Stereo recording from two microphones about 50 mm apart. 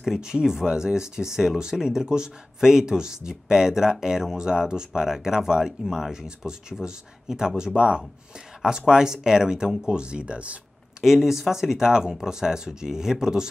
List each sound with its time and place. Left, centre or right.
0.0 s speech: centre
11.0 s speech: centre